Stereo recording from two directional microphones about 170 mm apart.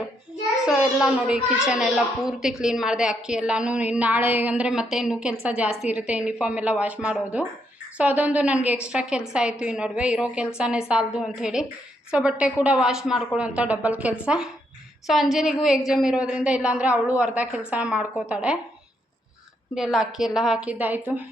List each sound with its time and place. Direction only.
0.6 s a child's voice: 5° right (ahead or behind)
19.7 s a child's voice: centre (ahead or behind)